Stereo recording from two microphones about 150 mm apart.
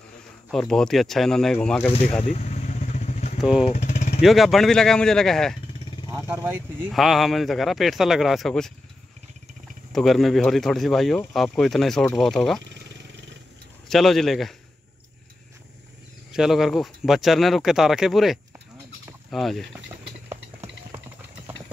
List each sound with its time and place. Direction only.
0.5 s speech: 5° left (ahead or behind)
2.2 s vehicle: 45° left (ahead or behind)
3.3 s speech: 5° right (ahead or behind)
3.6 s a sound: 50° left (ahead or behind)
4.2 s speech: centre (ahead or behind)
6.1 s speech: 15° right (ahead or behind)
6.9 s speech: centre (ahead or behind)
9.9 s speech: centre (ahead or behind)
13.8 s speech: centre (ahead or behind)
16.3 s speech: 5° right (ahead or behind)
20.2 s a sound: 15° right (ahead or behind)